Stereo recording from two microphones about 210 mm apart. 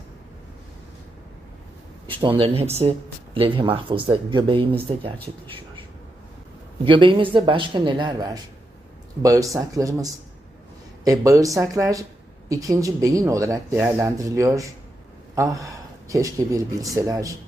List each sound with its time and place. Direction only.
2.0 s speech: 25° right (ahead or behind)
6.8 s speech: 25° right (ahead or behind)